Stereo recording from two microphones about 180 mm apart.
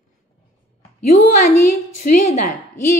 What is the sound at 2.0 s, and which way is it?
Speech, 45° left (ahead or behind).